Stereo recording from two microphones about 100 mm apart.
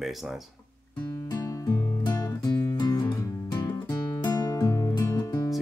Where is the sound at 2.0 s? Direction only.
40° left (ahead or behind).